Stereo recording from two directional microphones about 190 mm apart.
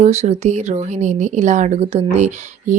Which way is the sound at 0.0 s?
35° right (ahead or behind).